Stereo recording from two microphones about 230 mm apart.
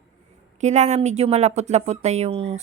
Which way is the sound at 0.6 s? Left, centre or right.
Right.